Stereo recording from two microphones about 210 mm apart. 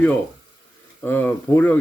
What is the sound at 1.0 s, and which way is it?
Speech, 10° left (ahead or behind).